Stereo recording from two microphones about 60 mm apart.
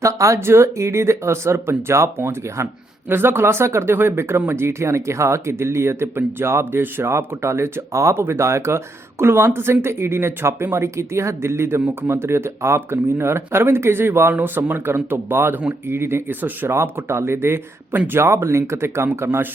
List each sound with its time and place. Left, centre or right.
0.0 s speech: right
0.3 s speech: right
16.7 s speech: right
17.9 s speech: right
18.2 s speech: right